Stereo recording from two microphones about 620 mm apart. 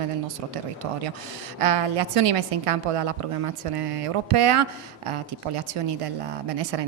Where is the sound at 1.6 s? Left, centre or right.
Right.